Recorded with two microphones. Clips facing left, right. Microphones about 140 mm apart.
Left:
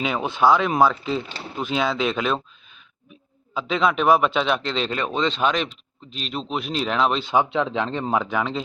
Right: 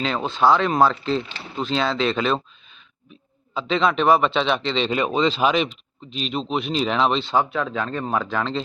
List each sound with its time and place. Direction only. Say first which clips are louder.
0.0 s a man's voice: even; 10° left (ahead or behind)
3.5 s a man's voice: right 1 dB; 5° left (ahead or behind)
7.5 s speech: left 2 dB; 20° left (ahead or behind)